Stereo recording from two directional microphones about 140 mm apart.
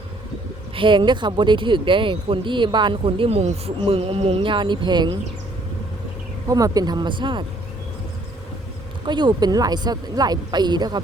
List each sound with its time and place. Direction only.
0.8 s speech: 35° right (ahead or behind)
6.5 s speech: 25° right (ahead or behind)
9.0 s speech: 35° right (ahead or behind)